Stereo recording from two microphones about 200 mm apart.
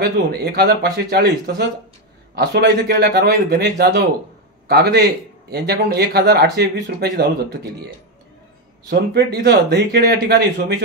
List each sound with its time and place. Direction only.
0.0 s a man's voice: 50° right (ahead or behind)
8.9 s speech: 55° right (ahead or behind)